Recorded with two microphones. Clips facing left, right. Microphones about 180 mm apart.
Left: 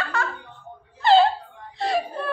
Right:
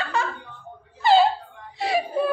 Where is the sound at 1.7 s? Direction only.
10° right (ahead or behind).